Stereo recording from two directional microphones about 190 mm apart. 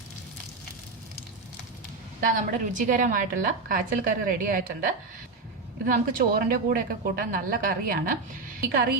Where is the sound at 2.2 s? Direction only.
45° right (ahead or behind).